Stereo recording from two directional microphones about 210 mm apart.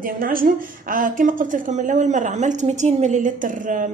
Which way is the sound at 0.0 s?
40° right (ahead or behind).